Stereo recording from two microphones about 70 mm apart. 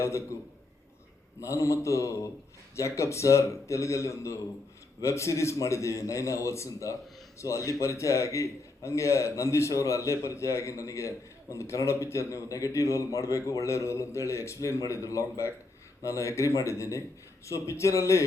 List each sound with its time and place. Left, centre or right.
0.0 s speech: left
1.4 s speech: left